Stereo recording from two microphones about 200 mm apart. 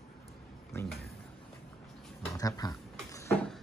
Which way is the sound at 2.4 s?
20° left (ahead or behind).